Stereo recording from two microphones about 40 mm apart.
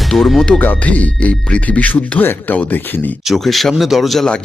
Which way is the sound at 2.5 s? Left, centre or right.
Left.